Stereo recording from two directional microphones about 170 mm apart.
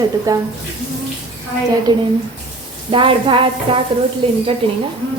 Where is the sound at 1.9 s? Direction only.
25° right (ahead or behind).